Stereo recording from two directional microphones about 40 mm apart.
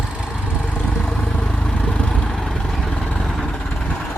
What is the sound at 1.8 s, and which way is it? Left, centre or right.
Vehicle, left.